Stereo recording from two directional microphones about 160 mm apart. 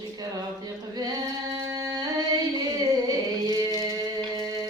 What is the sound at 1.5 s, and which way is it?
Music, 25° right (ahead or behind).